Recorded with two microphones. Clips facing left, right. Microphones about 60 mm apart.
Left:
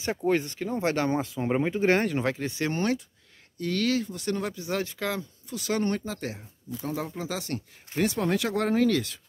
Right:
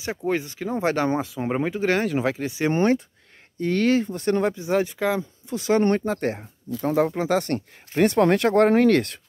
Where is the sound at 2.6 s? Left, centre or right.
Right.